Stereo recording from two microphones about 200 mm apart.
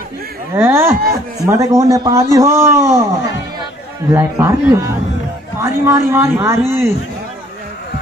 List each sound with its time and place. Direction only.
0.6 s a man's voice: 10° right (ahead or behind)